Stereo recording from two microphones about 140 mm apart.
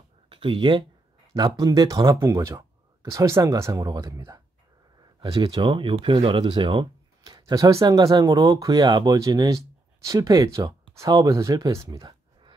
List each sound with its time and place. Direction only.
0.3 s speech: 35° right (ahead or behind)
5.2 s speech: 40° right (ahead or behind)